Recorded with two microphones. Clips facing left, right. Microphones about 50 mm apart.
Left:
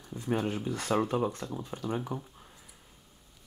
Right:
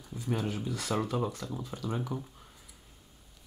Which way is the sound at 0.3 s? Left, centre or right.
Left.